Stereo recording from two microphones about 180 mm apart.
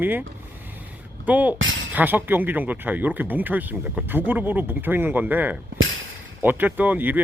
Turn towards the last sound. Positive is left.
turn(degrees=-10)  # may be behind; listen again after turning